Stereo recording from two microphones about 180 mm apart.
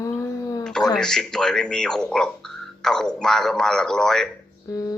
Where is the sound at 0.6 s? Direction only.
5° left (ahead or behind).